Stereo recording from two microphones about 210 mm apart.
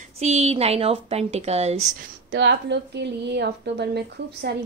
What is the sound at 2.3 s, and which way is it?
A woman's voice, 60° right (ahead or behind).